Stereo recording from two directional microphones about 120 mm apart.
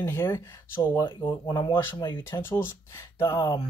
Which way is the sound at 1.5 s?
40° left (ahead or behind).